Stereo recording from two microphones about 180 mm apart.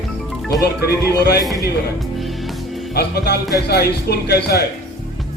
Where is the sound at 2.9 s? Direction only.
60° left (ahead or behind).